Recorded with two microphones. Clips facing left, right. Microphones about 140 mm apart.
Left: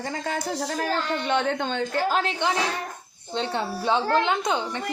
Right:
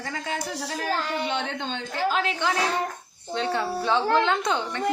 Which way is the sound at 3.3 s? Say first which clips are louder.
Right 1 dB; 25° left (ahead or behind).